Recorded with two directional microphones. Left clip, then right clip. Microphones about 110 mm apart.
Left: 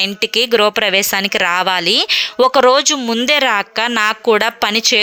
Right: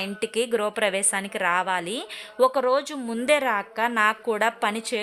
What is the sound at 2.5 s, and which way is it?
Speech, 55° left (ahead or behind).